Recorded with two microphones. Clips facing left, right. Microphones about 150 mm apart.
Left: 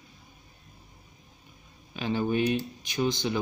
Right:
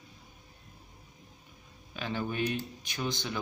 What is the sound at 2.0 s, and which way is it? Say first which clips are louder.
Speech: left 6 dB; 20° left (ahead or behind).